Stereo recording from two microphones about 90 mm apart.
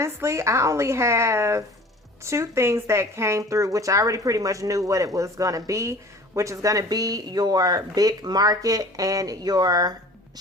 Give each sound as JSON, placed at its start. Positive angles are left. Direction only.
{"t": 0.0, "sound": "speech", "side_deg": -30}